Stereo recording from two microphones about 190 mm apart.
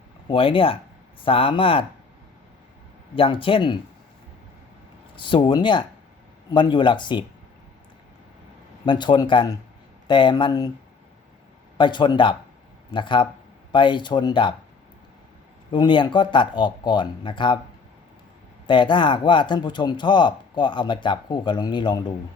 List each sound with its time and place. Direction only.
0.3 s speech: 30° left (ahead or behind)
3.2 s speech: 30° left (ahead or behind)
5.1 s speech: 25° left (ahead or behind)
8.9 s speech: 25° left (ahead or behind)
11.8 s speech: 25° left (ahead or behind)
15.7 s speech: 25° left (ahead or behind)
18.7 s speech: 25° left (ahead or behind)